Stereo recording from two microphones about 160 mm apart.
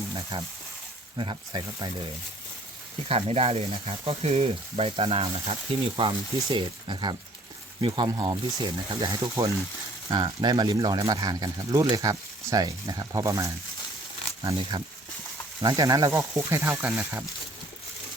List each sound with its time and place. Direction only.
1.1 s speech: 30° right (ahead or behind)
3.1 s speech: 40° right (ahead or behind); by 13.5 s 20° right (ahead or behind)
14.5 s speech: 30° right (ahead or behind); by 17.2 s 10° right (ahead or behind)